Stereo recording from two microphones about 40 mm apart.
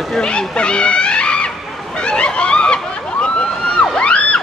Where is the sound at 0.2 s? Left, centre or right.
Left.